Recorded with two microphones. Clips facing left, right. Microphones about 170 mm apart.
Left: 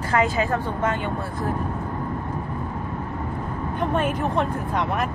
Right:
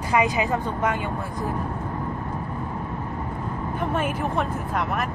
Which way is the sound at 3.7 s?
5° right (ahead or behind).